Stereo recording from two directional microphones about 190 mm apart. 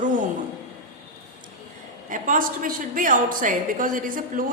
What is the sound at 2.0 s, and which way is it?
A woman's voice, 45° right (ahead or behind).